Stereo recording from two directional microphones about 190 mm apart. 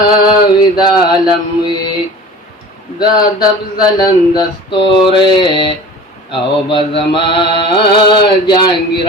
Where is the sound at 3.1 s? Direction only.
20° left (ahead or behind).